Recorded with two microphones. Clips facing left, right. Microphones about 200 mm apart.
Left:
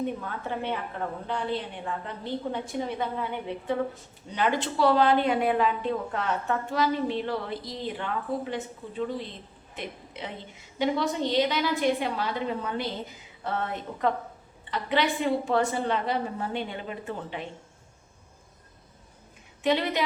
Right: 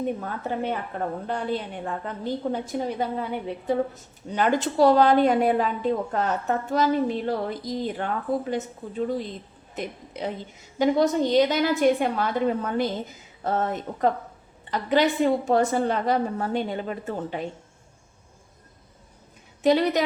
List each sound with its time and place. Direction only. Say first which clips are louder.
0.9 s a woman's voice: right 3 dB; 45° right (ahead or behind)
19.6 s a woman's voice: right 5 dB; 40° right (ahead or behind)